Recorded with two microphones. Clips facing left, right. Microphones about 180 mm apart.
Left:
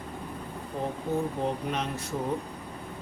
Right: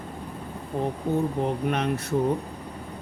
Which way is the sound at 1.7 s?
60° right (ahead or behind).